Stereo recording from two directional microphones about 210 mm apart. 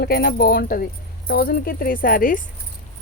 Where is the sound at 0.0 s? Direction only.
50° left (ahead or behind).